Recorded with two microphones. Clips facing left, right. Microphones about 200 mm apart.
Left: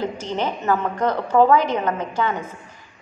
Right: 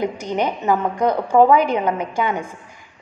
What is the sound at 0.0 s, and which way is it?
A woman's voice, 15° right (ahead or behind).